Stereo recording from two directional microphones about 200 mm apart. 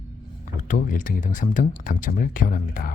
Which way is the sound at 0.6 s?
40° left (ahead or behind).